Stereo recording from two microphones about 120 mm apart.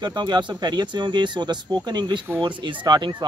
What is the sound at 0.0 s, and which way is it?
Speech, 35° right (ahead or behind).